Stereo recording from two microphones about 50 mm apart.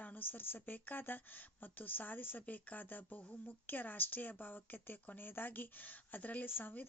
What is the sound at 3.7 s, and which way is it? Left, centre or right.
A woman's voice, left.